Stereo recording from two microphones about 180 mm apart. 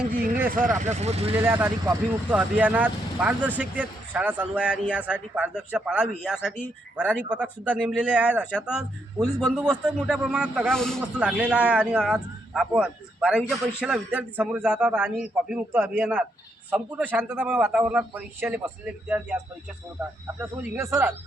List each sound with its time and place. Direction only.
0.0 s speech: 10° right (ahead or behind)
1.0 s speech: 35° right (ahead or behind)
1.4 s a man's voice: 10° right (ahead or behind)
20.4 s speech: 15° right (ahead or behind)